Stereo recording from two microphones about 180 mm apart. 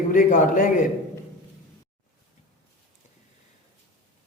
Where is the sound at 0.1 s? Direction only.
45° left (ahead or behind).